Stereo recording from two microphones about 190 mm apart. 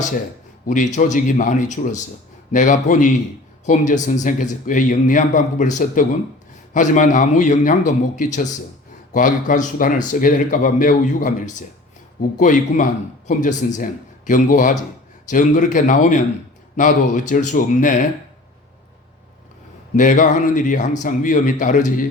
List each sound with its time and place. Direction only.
0.7 s speech: 40° left (ahead or behind)
20.0 s speech: 40° left (ahead or behind)